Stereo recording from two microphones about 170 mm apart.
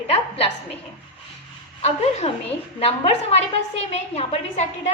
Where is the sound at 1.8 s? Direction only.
40° left (ahead or behind).